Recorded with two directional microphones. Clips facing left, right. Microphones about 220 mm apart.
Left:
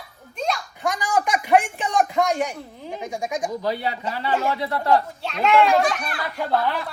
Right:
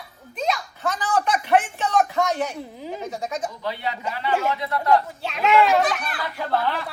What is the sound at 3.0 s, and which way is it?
Speech, 15° left (ahead or behind).